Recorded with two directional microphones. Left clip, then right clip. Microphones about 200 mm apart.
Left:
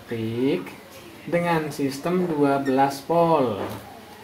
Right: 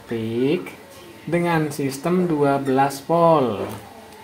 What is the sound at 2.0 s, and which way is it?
Speech, 40° right (ahead or behind).